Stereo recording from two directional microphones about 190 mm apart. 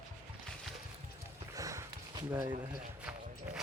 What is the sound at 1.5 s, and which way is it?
Sniff, 15° right (ahead or behind).